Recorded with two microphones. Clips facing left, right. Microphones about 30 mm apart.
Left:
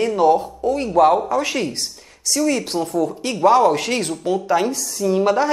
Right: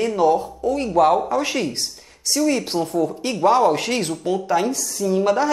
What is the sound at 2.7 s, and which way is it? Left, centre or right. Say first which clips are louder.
Speech: even; centre.